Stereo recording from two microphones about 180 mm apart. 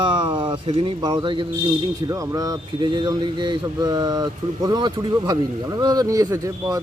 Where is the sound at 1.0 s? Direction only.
20° right (ahead or behind).